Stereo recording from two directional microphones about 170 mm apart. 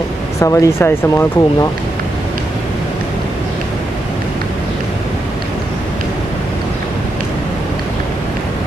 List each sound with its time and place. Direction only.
0.3 s speech: 20° left (ahead or behind)